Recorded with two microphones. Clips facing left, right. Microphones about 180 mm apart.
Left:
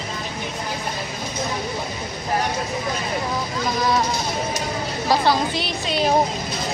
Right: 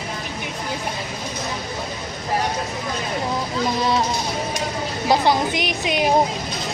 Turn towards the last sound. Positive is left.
turn(degrees=-15)  # may be behind; listen again after turning